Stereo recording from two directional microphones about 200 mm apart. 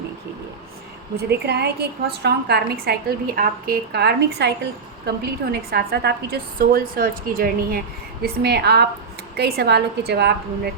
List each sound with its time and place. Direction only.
1.1 s a woman's voice: 55° right (ahead or behind)